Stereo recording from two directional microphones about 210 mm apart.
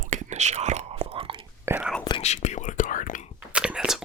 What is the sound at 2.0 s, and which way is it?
Whispering, 25° left (ahead or behind).